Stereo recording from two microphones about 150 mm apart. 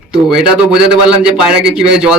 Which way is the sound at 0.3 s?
5° right (ahead or behind).